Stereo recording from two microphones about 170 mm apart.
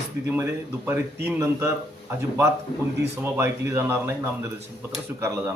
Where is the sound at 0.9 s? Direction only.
15° right (ahead or behind).